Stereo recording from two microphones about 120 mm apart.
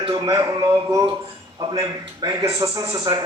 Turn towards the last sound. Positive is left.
turn(degrees=-30)  # may be behind; listen again after turning